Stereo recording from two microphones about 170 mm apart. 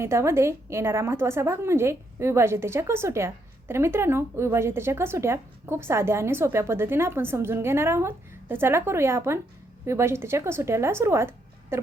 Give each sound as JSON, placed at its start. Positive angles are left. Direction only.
{"t": 0.0, "sound": "a woman's voice", "side_deg": -15}